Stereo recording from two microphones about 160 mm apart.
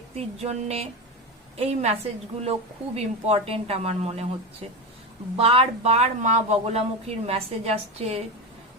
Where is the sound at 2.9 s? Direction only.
40° right (ahead or behind).